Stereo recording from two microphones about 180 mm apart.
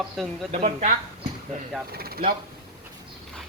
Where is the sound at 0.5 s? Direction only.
40° right (ahead or behind).